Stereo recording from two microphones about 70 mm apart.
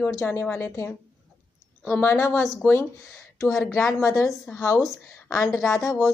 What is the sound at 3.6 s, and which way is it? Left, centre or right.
Speech, centre.